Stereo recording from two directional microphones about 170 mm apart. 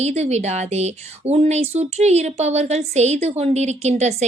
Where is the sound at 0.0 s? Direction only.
40° right (ahead or behind).